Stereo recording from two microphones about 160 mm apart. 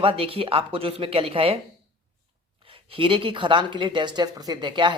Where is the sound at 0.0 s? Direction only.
35° right (ahead or behind).